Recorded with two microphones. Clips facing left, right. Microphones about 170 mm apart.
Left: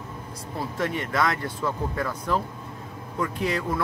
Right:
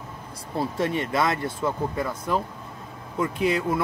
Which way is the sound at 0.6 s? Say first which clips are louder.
Right 3 dB; 25° right (ahead or behind).